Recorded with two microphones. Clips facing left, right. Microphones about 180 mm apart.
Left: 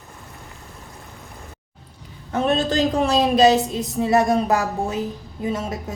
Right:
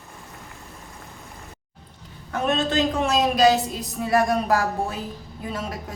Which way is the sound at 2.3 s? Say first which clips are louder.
Left 3 dB; 35° left (ahead or behind).